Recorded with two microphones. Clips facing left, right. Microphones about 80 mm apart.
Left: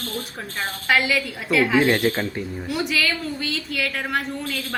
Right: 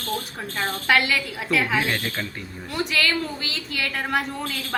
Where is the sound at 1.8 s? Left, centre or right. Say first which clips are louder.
Left 7 dB; centre.